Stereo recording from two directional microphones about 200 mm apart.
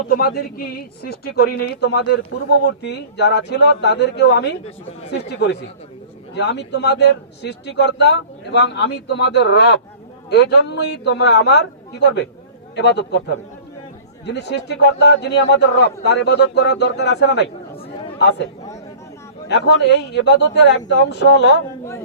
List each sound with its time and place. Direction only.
0.1 s speech: 50° left (ahead or behind)
6.3 s speech: 60° left (ahead or behind)
19.5 s speech: 55° left (ahead or behind)